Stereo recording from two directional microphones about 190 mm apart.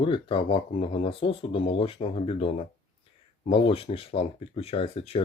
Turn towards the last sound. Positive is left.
turn(degrees=30)  # may be behind; listen again after turning